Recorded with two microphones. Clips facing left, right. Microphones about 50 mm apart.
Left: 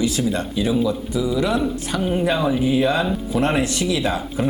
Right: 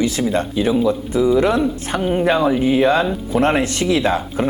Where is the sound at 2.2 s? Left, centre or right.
Right.